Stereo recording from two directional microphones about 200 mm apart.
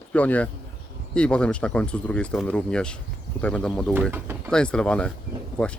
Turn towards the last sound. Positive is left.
turn(degrees=5)  # may be behind; listen again after turning